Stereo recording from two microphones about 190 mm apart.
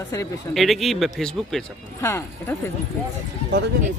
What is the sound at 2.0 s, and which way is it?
Speech, 15° left (ahead or behind).